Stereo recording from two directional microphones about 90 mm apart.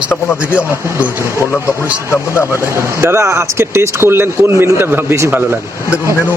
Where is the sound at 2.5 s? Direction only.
30° right (ahead or behind).